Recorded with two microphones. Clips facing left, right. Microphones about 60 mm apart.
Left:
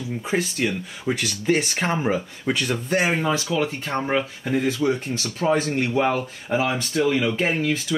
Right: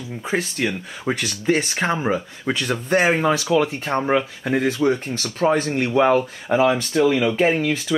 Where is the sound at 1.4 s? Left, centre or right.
Right.